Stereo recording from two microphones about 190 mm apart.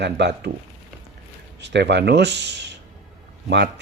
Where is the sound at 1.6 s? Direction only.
65° right (ahead or behind).